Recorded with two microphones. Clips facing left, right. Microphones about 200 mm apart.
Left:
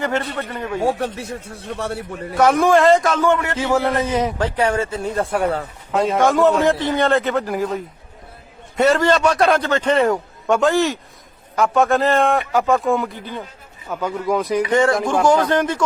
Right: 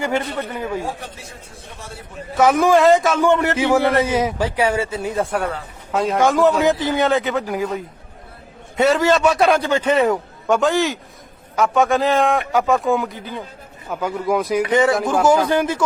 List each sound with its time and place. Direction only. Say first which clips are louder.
0.0 s speech: even; 10° right (ahead or behind)
0.9 s speech: left 9 dB; 65° left (ahead or behind)
2.3 s a man's voice: even; centre (ahead or behind)